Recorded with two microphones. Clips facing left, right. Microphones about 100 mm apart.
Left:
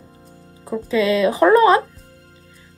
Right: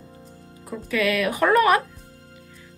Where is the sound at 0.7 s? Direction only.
25° left (ahead or behind).